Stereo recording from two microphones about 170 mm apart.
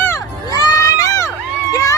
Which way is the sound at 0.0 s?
15° left (ahead or behind).